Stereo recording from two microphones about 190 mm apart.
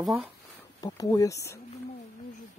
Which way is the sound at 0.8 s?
20° left (ahead or behind).